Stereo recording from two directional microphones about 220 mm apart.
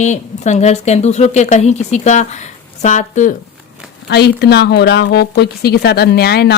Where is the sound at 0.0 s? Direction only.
30° left (ahead or behind).